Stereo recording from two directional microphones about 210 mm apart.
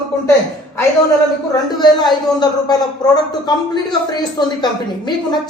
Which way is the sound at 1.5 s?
20° left (ahead or behind).